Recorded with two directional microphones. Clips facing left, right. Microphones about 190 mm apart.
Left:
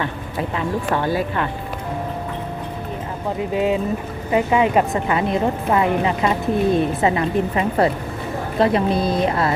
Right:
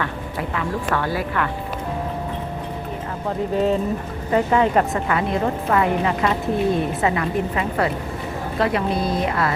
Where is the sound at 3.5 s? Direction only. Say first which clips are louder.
Even; 10° left (ahead or behind).